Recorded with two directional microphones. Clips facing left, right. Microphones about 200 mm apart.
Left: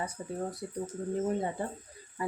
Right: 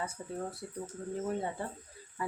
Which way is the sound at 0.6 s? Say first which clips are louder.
Left 5 dB; 15° left (ahead or behind).